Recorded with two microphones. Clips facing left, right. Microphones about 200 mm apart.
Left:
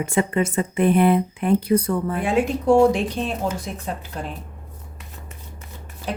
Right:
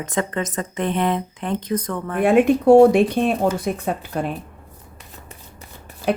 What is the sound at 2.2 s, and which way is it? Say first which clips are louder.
Speech: right 10 dB; 60° right (ahead or behind).